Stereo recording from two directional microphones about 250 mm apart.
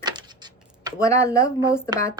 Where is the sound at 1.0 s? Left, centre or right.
Centre.